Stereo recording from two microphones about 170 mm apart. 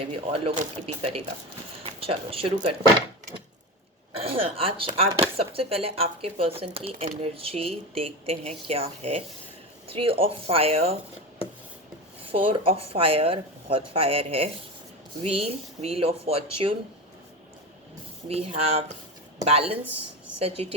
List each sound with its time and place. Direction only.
0.0 s speech: 35° right (ahead or behind)
1.8 s a sound: 35° right (ahead or behind)
4.1 s a woman's voice: 35° right (ahead or behind)
12.2 s speech: 35° right (ahead or behind)
18.3 s speech: 35° right (ahead or behind)